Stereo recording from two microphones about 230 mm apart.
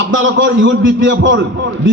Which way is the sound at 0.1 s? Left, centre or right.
Right.